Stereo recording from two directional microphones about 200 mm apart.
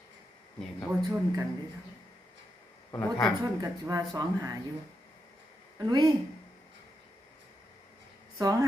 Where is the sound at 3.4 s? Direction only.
15° right (ahead or behind).